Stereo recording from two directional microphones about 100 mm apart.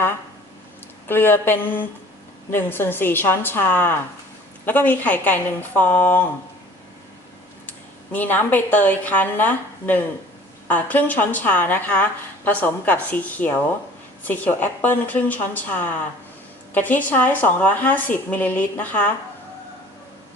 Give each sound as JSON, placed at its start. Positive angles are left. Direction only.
{"t": 1.0, "sound": "a woman's voice", "side_deg": 20}
{"t": 7.7, "sound": "a woman's voice", "side_deg": 15}